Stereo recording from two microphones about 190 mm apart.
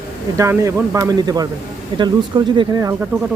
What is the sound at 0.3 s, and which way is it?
Speech, 15° right (ahead or behind).